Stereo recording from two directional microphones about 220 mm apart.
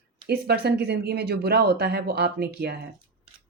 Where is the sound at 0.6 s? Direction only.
50° right (ahead or behind).